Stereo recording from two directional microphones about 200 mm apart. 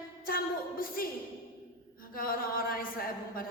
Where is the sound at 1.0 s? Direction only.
45° left (ahead or behind).